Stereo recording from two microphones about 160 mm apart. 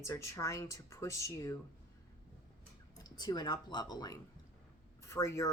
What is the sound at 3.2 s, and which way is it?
Speech, 25° left (ahead or behind).